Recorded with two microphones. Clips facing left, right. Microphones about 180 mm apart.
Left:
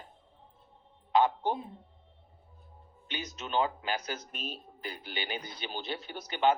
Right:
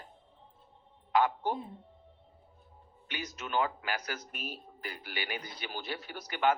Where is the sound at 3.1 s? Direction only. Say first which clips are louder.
Left 1 dB; 20° left (ahead or behind).